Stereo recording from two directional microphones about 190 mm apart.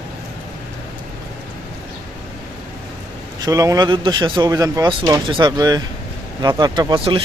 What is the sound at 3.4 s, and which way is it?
Speech, 20° right (ahead or behind).